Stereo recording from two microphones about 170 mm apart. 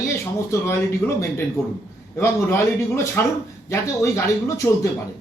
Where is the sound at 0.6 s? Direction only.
15° left (ahead or behind).